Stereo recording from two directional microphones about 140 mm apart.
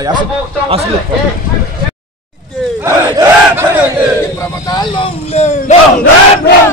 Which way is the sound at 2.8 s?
20° right (ahead or behind).